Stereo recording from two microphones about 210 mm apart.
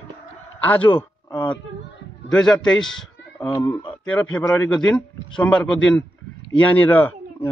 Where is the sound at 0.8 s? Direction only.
25° left (ahead or behind).